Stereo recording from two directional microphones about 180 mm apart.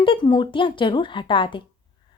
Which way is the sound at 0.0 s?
25° left (ahead or behind).